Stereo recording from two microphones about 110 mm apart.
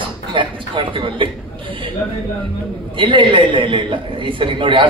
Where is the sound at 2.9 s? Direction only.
50° right (ahead or behind).